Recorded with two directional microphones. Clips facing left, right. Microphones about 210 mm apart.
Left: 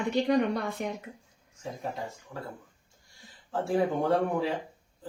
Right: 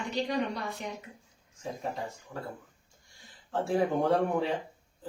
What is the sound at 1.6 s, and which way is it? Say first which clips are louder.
Speech: even; centre (ahead or behind).